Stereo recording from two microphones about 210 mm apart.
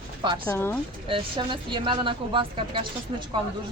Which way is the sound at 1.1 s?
25° right (ahead or behind).